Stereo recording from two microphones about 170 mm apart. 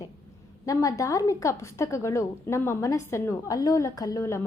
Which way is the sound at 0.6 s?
20° left (ahead or behind).